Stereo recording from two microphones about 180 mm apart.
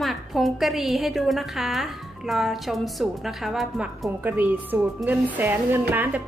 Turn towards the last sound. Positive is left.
turn(degrees=-10)  # may be behind; listen again after turning